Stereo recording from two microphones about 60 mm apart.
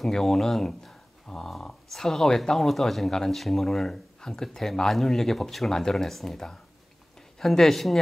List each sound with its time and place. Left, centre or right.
0.0 s speech: centre